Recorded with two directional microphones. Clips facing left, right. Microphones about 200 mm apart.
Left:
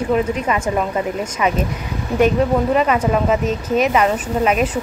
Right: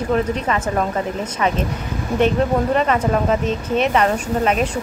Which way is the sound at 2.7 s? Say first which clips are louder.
Left 1 dB; 10° left (ahead or behind).